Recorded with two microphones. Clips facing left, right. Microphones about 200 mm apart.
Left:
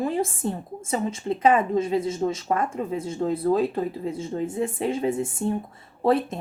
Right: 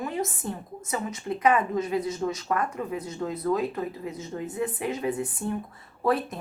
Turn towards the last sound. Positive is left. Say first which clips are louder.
# left 4 dB
turn(degrees=25)  # may be behind; listen again after turning